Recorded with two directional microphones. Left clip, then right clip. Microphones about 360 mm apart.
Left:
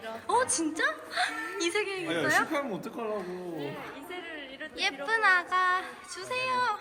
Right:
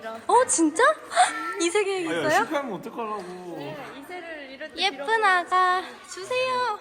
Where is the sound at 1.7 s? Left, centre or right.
Centre.